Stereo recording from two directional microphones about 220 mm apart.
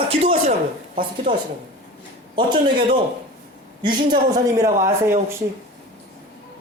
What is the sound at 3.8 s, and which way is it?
A man's voice, 20° right (ahead or behind).